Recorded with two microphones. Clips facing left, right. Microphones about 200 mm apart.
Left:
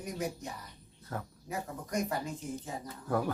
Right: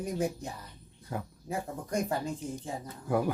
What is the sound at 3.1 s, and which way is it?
Speech, 10° right (ahead or behind).